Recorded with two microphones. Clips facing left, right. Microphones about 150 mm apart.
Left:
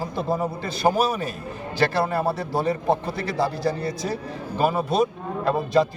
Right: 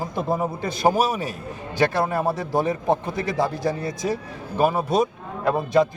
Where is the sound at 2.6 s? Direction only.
20° right (ahead or behind).